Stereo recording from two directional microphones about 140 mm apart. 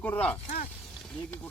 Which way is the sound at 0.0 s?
10° left (ahead or behind).